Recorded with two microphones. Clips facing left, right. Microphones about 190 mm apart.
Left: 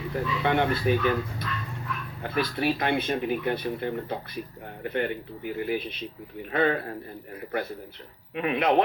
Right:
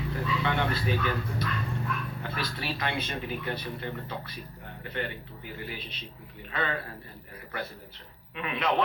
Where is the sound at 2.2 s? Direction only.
55° left (ahead or behind).